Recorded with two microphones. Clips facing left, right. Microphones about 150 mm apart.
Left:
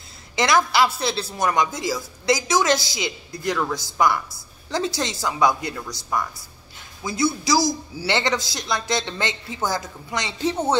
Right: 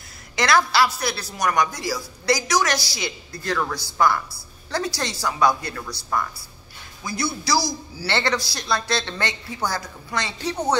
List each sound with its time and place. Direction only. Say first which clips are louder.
0.4 s a woman's voice: even; 20° left (ahead or behind)